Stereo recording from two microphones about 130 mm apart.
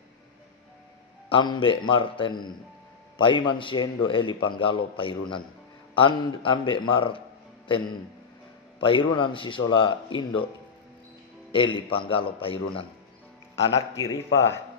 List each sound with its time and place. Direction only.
1.3 s a man's voice: 40° left (ahead or behind)
11.5 s a man's voice: 40° left (ahead or behind)
13.9 s a man's voice: 20° left (ahead or behind)